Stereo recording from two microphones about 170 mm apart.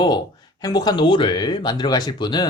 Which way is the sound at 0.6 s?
25° left (ahead or behind).